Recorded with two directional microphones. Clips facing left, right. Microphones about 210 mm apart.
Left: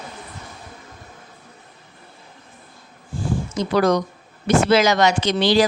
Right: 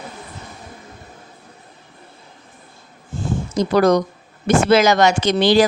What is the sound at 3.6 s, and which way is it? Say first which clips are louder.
Speech: right 4 dB; 40° right (ahead or behind).